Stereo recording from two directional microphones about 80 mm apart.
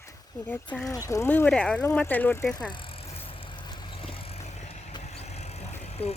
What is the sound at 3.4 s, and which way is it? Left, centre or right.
Vehicle, left.